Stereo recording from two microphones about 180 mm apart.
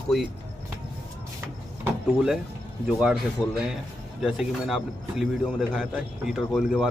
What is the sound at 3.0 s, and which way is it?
A man's voice, 5° right (ahead or behind).